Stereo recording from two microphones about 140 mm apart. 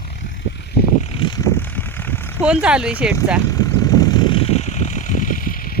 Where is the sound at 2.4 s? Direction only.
5° right (ahead or behind).